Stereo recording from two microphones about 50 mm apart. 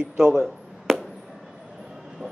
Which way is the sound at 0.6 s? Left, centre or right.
Centre.